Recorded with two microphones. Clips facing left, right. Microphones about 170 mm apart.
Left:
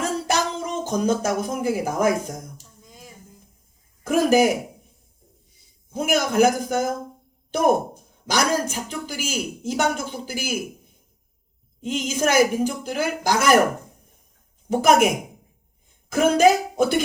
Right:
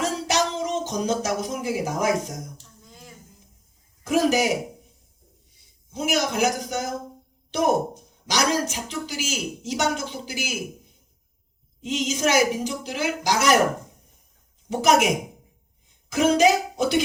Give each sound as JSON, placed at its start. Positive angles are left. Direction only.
{"t": 0.0, "sound": "music", "side_deg": 55}
{"t": 2.8, "sound": "a sound", "side_deg": 10}
{"t": 4.0, "sound": "a woman's voice", "side_deg": 55}
{"t": 5.9, "sound": "a woman's voice", "side_deg": 55}
{"t": 11.8, "sound": "a woman's voice", "side_deg": 55}
{"t": 14.7, "sound": "a woman's voice", "side_deg": 55}